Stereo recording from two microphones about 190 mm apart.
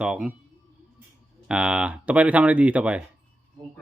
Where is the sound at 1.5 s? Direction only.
5° right (ahead or behind).